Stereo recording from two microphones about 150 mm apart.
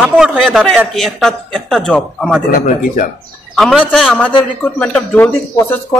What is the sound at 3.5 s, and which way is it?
A man's voice, 5° left (ahead or behind).